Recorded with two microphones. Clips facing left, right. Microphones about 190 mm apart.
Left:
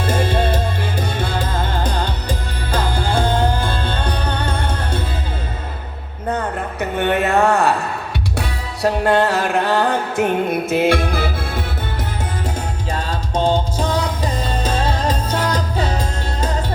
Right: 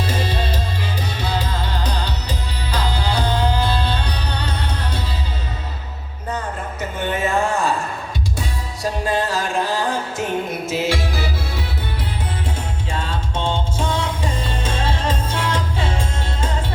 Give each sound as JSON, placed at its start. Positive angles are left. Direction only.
{"t": 0.0, "sound": "music", "side_deg": 50}
{"t": 6.2, "sound": "a sound", "side_deg": 60}
{"t": 8.4, "sound": "music", "side_deg": 65}
{"t": 12.9, "sound": "music", "side_deg": 40}